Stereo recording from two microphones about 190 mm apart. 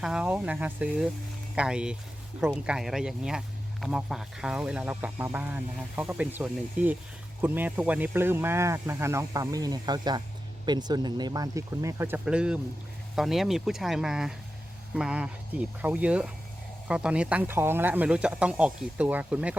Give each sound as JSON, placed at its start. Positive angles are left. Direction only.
{"t": 0.0, "sound": "speech", "side_deg": -5}